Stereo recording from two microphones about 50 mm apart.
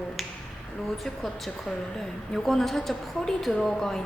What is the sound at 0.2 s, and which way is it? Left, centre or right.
Finger snapping, centre.